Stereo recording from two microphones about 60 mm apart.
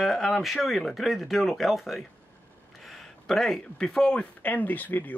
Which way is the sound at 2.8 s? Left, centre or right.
Centre.